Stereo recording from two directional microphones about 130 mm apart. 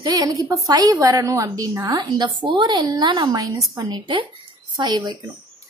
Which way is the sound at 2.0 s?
35° right (ahead or behind).